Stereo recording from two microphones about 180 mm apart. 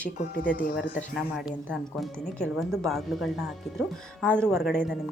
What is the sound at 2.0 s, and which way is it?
A woman's voice, centre (ahead or behind).